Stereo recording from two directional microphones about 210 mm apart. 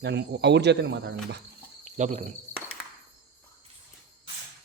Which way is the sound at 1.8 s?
35° right (ahead or behind).